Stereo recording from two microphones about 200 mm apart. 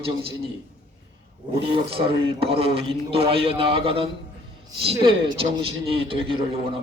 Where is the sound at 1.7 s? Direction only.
25° right (ahead or behind).